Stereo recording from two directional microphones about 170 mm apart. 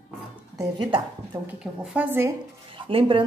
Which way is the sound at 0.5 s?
25° right (ahead or behind).